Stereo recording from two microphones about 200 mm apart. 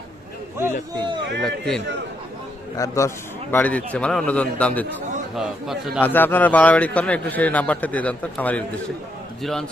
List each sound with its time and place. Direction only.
1.4 s a man's voice: centre (ahead or behind)
2.7 s a man's voice: 15° left (ahead or behind); by 6.0 s centre (ahead or behind)
6.0 s a man's voice: 10° left (ahead or behind)